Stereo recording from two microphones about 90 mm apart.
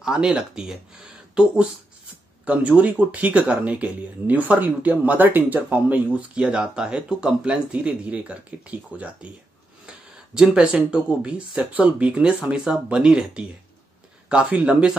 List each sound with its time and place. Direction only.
0.0 s speech: 10° right (ahead or behind)